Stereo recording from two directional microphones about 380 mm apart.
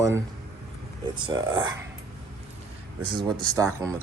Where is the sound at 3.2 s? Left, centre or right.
Centre.